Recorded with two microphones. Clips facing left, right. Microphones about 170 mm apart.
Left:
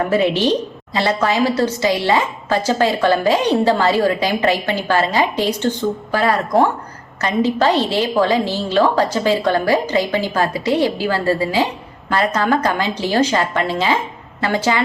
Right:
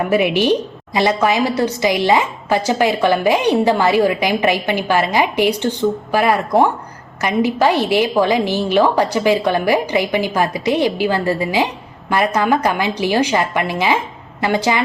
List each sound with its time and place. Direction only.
0.1 s a woman's voice: 15° right (ahead or behind)